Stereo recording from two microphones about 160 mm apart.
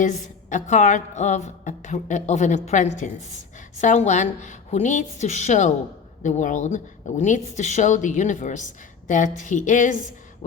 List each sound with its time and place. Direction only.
0.0 s speech: 50° left (ahead or behind)